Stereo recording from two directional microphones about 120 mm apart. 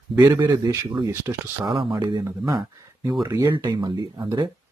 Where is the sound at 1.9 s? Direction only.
30° right (ahead or behind).